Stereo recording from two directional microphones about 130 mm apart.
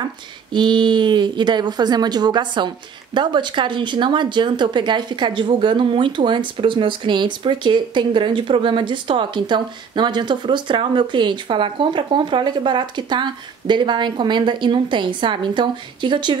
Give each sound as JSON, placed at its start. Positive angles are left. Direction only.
{"t": 0.5, "sound": "speech", "side_deg": -35}